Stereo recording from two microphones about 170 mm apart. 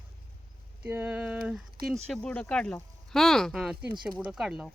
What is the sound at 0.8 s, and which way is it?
Speech, 10° right (ahead or behind).